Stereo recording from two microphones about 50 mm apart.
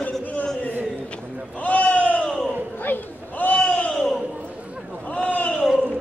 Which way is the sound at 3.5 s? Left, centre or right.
Left.